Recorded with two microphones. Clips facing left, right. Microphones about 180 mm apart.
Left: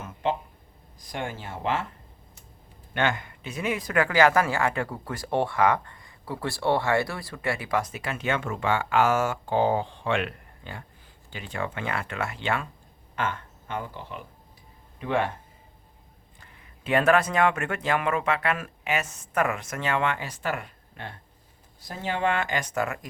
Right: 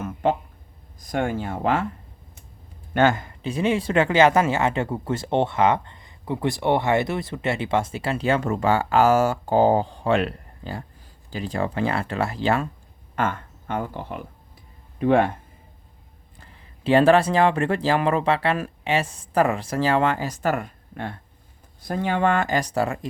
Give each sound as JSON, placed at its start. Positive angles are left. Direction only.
{"t": 0.0, "sound": "a sound", "side_deg": -50}
{"t": 1.0, "sound": "speech", "side_deg": -50}
{"t": 2.9, "sound": "speech", "side_deg": -40}
{"t": 13.1, "sound": "speech", "side_deg": -45}
{"t": 16.8, "sound": "speech", "side_deg": -30}